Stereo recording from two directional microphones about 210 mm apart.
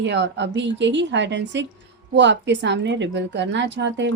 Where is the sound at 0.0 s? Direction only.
55° right (ahead or behind).